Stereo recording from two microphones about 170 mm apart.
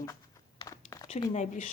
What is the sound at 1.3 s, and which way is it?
Speech, 45° left (ahead or behind).